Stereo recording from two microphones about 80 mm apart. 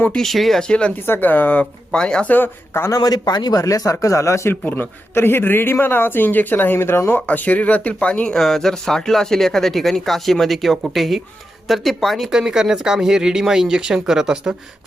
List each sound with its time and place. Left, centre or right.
0.2 s speech: centre
0.7 s speech: centre
0.9 s a man's voice: left
1.9 s a man's voice: centre; by 2.9 s left
2.9 s speech: left
4.6 s a man's voice: left
7.3 s speech: centre